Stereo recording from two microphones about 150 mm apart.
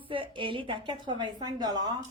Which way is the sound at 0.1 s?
35° right (ahead or behind).